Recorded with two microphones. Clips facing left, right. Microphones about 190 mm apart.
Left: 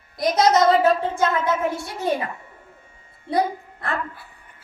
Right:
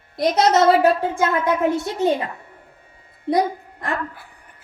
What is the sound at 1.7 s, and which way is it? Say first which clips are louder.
Speech: right 5 dB; 20° right (ahead or behind).